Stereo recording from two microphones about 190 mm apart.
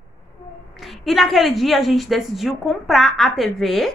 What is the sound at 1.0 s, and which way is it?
A woman's voice, centre (ahead or behind).